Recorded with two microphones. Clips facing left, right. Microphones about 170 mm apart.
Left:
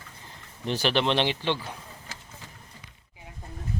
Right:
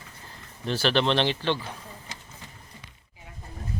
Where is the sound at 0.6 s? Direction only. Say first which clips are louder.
Right 1 dB; 15° left (ahead or behind).